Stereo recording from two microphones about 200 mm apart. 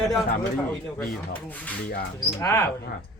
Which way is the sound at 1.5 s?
10° left (ahead or behind).